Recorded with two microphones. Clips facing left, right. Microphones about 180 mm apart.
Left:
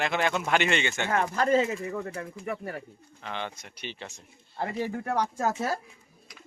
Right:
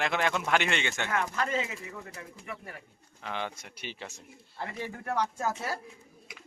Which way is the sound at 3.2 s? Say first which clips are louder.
Even; 5° right (ahead or behind).